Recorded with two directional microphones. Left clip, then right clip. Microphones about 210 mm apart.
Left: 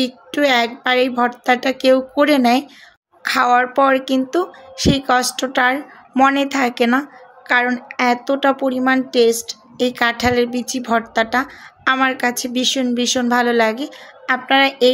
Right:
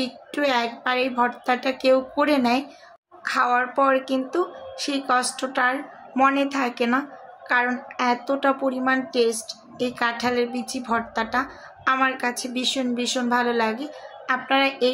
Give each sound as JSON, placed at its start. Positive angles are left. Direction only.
{"t": 0.0, "sound": "speech", "side_deg": 35}